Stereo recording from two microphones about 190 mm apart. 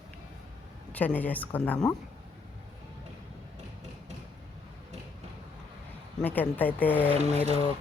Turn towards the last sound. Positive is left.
turn(degrees=-35)  # may be behind; listen again after turning